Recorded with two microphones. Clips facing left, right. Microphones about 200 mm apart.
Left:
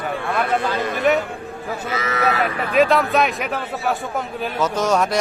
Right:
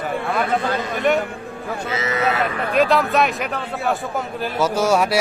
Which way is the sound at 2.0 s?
25° right (ahead or behind).